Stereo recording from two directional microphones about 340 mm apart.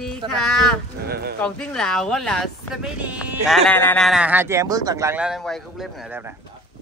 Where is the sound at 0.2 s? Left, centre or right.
Centre.